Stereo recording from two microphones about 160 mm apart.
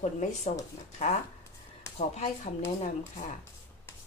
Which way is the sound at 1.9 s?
45° left (ahead or behind).